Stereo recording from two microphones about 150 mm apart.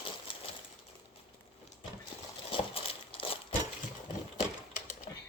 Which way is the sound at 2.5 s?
40° left (ahead or behind).